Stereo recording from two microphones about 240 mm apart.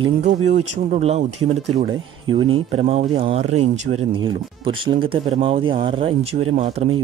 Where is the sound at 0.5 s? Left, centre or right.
Right.